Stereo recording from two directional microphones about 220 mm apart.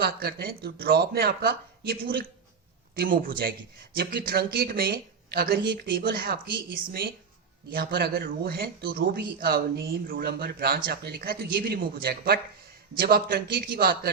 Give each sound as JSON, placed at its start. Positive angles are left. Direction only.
{"t": 0.0, "sound": "speech", "side_deg": -45}
{"t": 7.7, "sound": "speech", "side_deg": -45}